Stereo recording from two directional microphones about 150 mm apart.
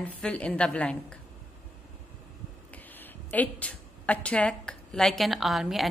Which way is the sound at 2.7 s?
10° left (ahead or behind).